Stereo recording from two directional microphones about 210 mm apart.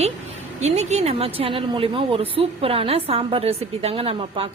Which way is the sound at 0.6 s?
30° right (ahead or behind).